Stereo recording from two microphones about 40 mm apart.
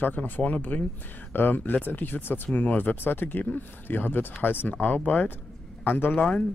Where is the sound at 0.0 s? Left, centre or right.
Left.